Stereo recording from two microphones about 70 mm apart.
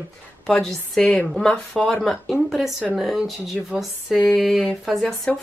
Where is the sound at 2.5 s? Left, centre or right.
Centre.